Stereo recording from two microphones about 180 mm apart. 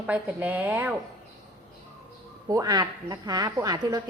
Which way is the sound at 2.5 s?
20° right (ahead or behind).